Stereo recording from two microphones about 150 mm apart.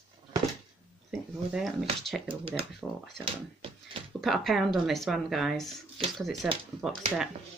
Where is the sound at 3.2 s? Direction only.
35° right (ahead or behind).